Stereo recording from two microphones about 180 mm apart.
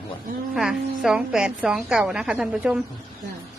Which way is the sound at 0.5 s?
5° right (ahead or behind).